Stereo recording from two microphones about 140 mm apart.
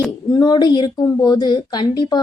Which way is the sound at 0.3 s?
30° left (ahead or behind).